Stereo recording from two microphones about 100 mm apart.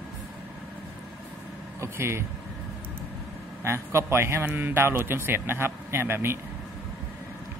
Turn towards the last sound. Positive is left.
turn(degrees=-25)  # may be behind; listen again after turning